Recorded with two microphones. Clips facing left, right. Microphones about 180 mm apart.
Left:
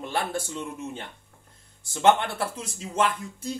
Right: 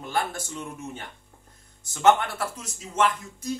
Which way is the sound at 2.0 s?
30° left (ahead or behind).